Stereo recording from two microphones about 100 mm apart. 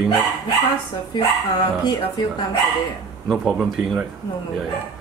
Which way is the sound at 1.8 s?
45° left (ahead or behind).